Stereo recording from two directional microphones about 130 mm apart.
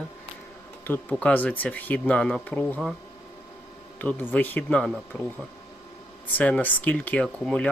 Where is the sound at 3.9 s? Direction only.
15° left (ahead or behind).